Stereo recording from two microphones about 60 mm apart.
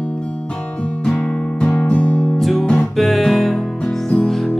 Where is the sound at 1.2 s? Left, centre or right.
Left.